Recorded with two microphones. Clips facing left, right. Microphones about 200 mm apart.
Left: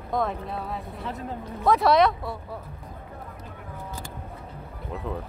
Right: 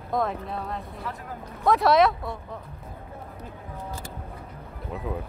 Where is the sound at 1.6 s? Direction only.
Centre (ahead or behind).